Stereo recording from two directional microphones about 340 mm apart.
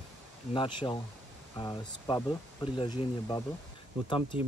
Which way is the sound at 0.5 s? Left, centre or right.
Centre.